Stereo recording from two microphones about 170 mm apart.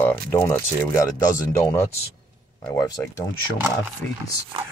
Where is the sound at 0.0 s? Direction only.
10° left (ahead or behind).